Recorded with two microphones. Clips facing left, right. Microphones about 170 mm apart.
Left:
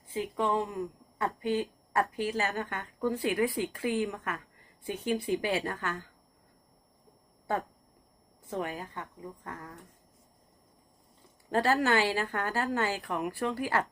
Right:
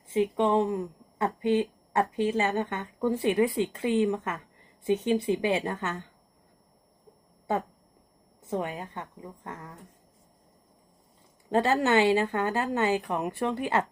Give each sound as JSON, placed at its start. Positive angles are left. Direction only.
{"t": 0.1, "sound": "speech", "side_deg": -25}
{"t": 8.4, "sound": "speech", "side_deg": -20}
{"t": 11.5, "sound": "speech", "side_deg": -20}